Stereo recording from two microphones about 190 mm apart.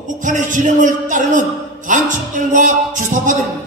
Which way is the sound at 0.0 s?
40° right (ahead or behind).